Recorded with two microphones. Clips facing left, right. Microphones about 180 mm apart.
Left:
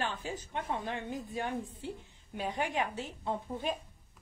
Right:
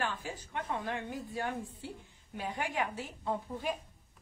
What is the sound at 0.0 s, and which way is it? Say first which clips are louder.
A woman's voice: left 1 dB; 20° left (ahead or behind).